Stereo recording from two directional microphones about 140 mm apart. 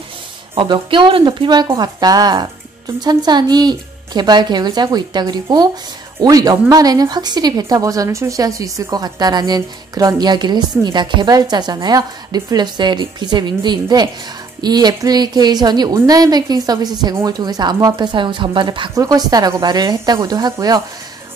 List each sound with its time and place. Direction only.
0.6 s a woman's voice: 35° right (ahead or behind)